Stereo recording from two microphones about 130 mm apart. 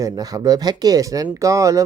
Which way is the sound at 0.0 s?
30° right (ahead or behind).